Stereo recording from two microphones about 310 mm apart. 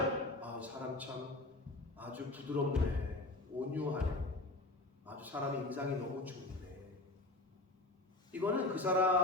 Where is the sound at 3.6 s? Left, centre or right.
Centre.